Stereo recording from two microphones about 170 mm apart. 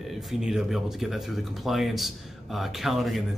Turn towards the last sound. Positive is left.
turn(degrees=0)  # may be behind; listen again after turning